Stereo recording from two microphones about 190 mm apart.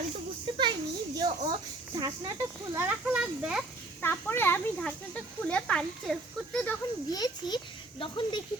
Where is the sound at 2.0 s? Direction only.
20° right (ahead or behind).